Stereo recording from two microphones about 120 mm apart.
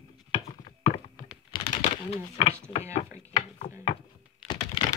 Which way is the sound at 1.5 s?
50° left (ahead or behind).